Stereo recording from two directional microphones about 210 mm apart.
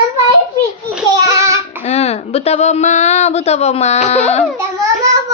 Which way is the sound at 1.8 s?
30° left (ahead or behind).